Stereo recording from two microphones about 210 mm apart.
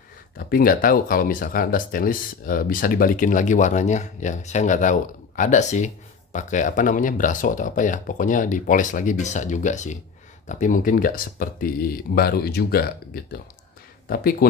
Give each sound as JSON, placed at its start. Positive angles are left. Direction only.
{"t": 0.4, "sound": "speech", "side_deg": 45}